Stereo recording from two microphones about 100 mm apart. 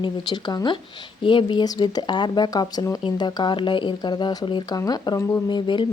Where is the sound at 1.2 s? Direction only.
55° left (ahead or behind).